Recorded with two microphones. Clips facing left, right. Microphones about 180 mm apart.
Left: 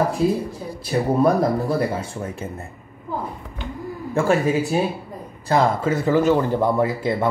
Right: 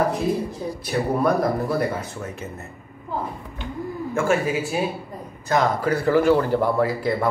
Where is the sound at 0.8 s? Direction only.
25° left (ahead or behind).